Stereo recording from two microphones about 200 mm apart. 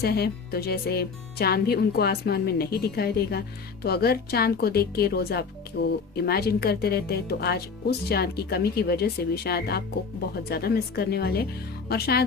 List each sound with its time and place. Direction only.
0.0 s speech: 50° left (ahead or behind)